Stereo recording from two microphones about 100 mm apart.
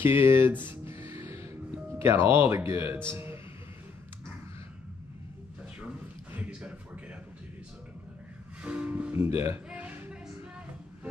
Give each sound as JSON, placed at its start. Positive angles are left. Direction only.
{"t": 0.0, "sound": "music", "side_deg": -20}
{"t": 3.1, "sound": "speech", "side_deg": -25}
{"t": 5.8, "sound": "a sound", "side_deg": -15}
{"t": 8.6, "sound": "music", "side_deg": -10}
{"t": 9.1, "sound": "speech", "side_deg": -25}
{"t": 9.7, "sound": "music", "side_deg": -15}